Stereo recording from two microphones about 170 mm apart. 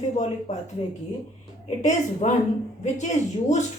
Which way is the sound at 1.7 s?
45° left (ahead or behind).